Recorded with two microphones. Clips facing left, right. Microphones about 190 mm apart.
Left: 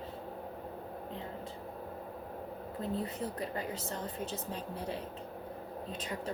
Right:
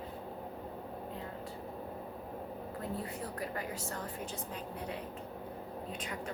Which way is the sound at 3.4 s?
25° left (ahead or behind).